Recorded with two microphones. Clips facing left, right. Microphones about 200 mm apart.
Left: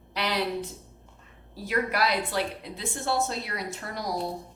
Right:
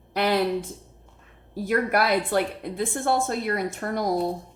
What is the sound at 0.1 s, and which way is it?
Speech, 50° right (ahead or behind).